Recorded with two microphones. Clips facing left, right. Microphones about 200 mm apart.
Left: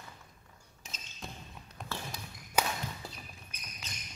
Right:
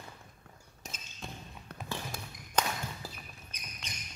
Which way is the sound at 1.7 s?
60° right (ahead or behind).